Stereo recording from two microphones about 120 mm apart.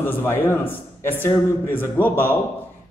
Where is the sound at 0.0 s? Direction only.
20° left (ahead or behind).